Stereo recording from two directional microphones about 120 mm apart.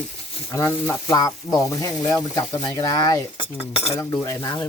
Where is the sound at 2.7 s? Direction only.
30° left (ahead or behind).